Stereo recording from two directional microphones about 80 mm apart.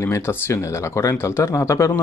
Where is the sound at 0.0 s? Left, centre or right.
Left.